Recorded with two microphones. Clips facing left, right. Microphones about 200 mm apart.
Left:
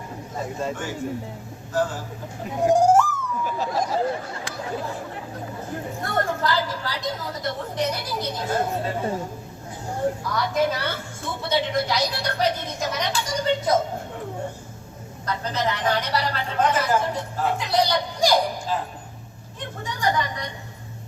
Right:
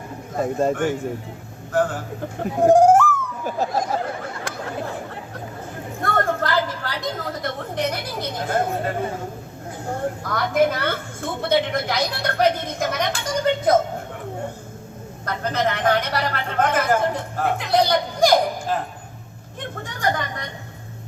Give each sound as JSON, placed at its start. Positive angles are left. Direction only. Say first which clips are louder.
{"t": 0.3, "sound": "a woman's voice", "louder": "right 8 dB", "side_deg": -55}
{"t": 2.4, "sound": "a sound", "louder": "right 5 dB", "side_deg": -55}
{"t": 6.0, "sound": "a woman's voice", "louder": "right 3 dB", "side_deg": -55}
{"t": 10.2, "sound": "a woman's voice", "louder": "right 7 dB", "side_deg": -55}
{"t": 15.3, "sound": "a woman's voice", "louder": "right 3 dB", "side_deg": -55}
{"t": 19.8, "sound": "a woman's voice", "louder": "even", "side_deg": -50}